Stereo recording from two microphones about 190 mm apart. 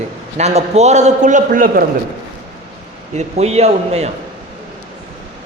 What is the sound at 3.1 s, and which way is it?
Speech, 35° right (ahead or behind).